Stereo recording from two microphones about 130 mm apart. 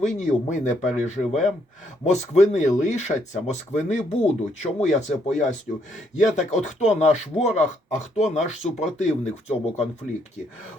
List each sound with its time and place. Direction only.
0.0 s speech: 65° left (ahead or behind)
9.5 s speech: 55° left (ahead or behind)